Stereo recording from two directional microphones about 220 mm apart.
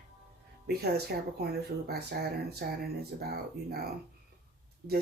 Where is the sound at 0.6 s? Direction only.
45° right (ahead or behind).